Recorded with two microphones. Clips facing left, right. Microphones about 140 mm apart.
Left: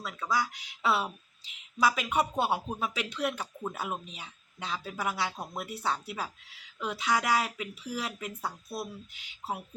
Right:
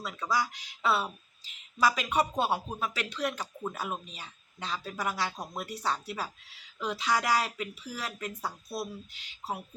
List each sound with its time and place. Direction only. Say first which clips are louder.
0.0 s speech: even; centre (ahead or behind)